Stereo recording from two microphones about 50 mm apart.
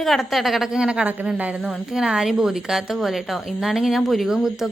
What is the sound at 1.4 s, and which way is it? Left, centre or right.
Speech, right.